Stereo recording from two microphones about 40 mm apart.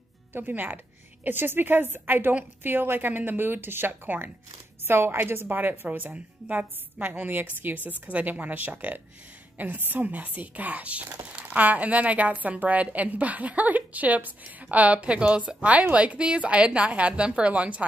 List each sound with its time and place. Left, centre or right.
0.3 s speech: right
4.8 s a woman's voice: right
5.9 s a woman's voice: right
9.8 s a woman's voice: right
10.0 s a woman's voice: right